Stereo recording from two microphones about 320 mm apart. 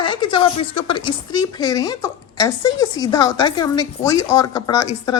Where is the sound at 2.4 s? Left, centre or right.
Left.